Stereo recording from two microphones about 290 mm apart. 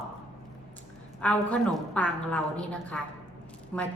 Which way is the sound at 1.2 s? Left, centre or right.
Centre.